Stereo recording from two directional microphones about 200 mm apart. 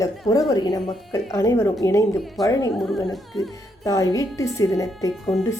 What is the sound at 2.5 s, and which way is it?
Speech, 15° left (ahead or behind).